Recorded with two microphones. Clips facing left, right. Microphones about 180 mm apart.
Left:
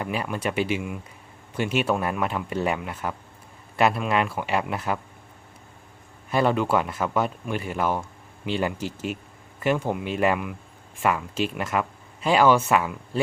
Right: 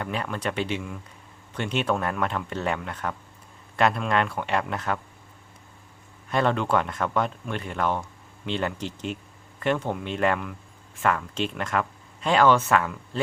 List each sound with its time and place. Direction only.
0.0 s speech: 10° left (ahead or behind)
6.3 s speech: 5° left (ahead or behind)